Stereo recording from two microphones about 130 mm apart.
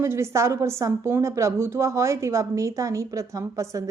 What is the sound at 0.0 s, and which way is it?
Speech, 20° right (ahead or behind).